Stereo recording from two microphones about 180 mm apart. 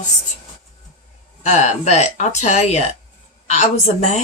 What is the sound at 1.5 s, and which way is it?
Speech, 40° left (ahead or behind).